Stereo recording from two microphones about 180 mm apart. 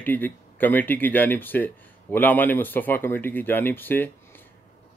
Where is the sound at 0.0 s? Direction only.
10° left (ahead or behind).